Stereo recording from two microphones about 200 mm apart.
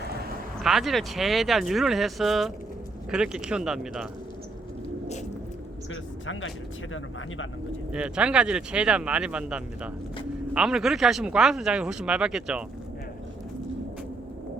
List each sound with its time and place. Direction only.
0.6 s speech: centre (ahead or behind)
5.9 s speech: 80° left
7.9 s speech: 5° right (ahead or behind)